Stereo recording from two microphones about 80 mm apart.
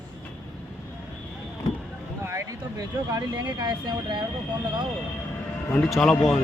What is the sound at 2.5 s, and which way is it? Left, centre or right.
Speech, right.